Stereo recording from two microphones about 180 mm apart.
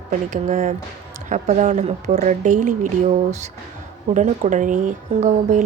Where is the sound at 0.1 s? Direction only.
45° right (ahead or behind).